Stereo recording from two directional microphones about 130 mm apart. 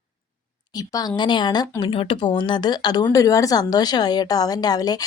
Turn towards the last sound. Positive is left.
turn(degrees=30)  # may be behind; listen again after turning